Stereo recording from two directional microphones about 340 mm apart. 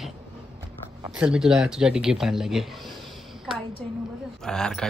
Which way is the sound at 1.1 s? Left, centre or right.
Centre.